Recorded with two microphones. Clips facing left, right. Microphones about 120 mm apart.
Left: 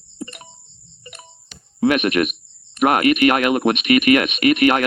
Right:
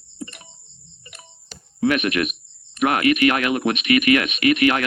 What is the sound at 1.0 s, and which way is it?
Music, 40° left (ahead or behind).